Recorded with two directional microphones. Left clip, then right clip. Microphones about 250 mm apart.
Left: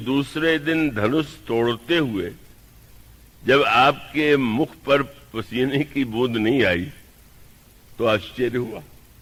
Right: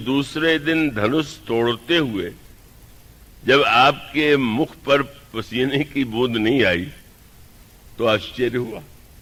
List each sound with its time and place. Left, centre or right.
0.0 s a man's voice: right
3.4 s a man's voice: right
7.9 s a man's voice: right